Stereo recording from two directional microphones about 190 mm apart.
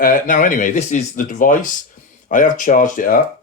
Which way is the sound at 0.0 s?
45° left (ahead or behind).